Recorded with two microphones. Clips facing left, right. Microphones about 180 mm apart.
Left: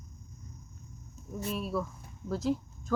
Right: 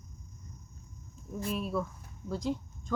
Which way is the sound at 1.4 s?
Centre (ahead or behind).